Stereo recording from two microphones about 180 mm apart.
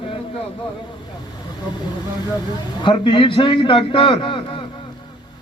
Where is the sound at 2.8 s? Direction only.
25° left (ahead or behind).